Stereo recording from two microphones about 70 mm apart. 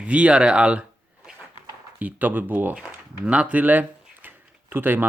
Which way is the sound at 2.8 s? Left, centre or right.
Centre.